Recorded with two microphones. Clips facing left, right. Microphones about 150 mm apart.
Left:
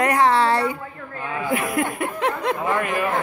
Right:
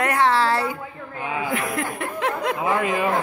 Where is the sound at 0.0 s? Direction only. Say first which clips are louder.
Left 2 dB; centre (ahead or behind).